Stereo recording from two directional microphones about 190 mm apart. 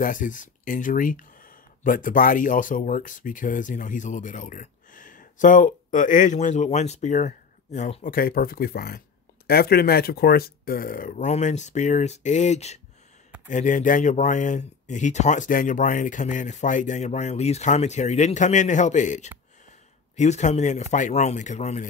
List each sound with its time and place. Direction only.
0.0 s speech: 45° left (ahead or behind)